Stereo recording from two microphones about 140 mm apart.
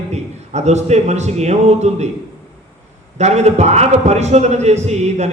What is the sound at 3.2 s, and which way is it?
A man's voice, 50° right (ahead or behind).